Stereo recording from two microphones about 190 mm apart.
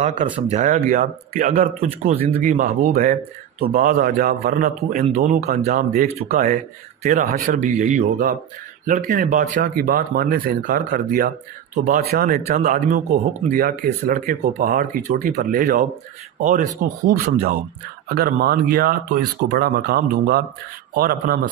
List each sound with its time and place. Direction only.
0.0 s speech: 40° right (ahead or behind)